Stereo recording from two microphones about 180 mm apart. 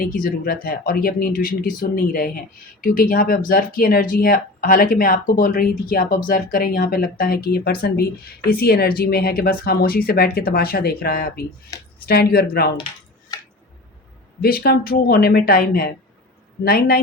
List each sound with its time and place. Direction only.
0.0 s speech: 55° left (ahead or behind)
14.4 s speech: 60° left (ahead or behind)